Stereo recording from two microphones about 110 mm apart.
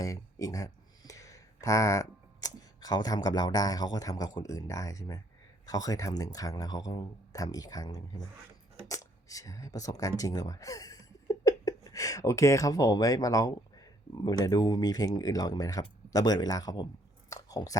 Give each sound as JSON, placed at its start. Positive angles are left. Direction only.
{"t": 0.0, "sound": "speech", "side_deg": 30}
{"t": 17.3, "sound": "chewing", "side_deg": 30}